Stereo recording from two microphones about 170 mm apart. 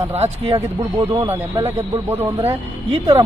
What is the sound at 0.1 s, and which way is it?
Speech, 35° right (ahead or behind).